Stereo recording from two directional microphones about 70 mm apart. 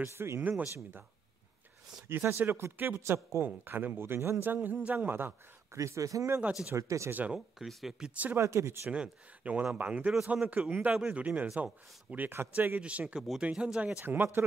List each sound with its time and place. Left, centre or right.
0.0 s speech: right
0.4 s speech: right
2.0 s speech: right
5.8 s speech: right
7.1 s speech: right
7.3 s speech: centre
8.1 s speech: right
8.4 s speech: right
8.9 s speech: centre
14.0 s speech: right